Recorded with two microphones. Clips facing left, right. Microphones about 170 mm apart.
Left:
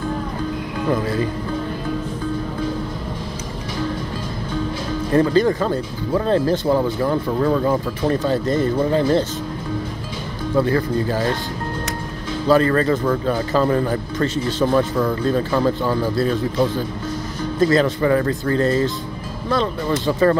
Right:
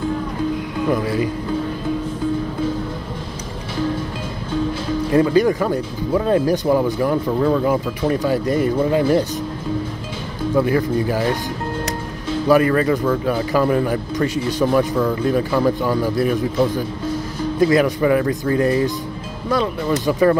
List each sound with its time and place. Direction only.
0.8 s speech: 15° right (ahead or behind)
5.1 s speech: 10° right (ahead or behind)
7.2 s speech: centre (ahead or behind)
7.6 s speech: 15° right (ahead or behind)
10.6 s speech: 15° right (ahead or behind)
12.4 s speech: 15° right (ahead or behind)
17.6 s speech: 15° right (ahead or behind)